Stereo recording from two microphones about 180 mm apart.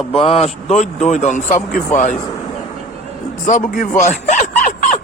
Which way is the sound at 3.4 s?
50° left (ahead or behind).